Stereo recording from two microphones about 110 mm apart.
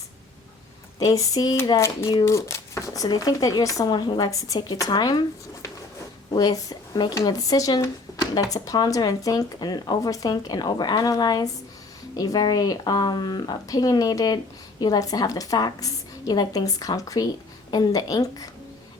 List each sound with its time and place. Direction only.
0.9 s speech: 35° left (ahead or behind)
6.3 s speech: 35° left (ahead or behind)